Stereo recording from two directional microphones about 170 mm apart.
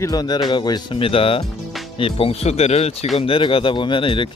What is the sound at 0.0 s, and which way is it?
Speech, 25° left (ahead or behind).